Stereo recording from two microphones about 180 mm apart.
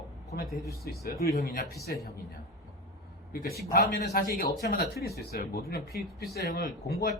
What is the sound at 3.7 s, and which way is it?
Speech, 60° left (ahead or behind).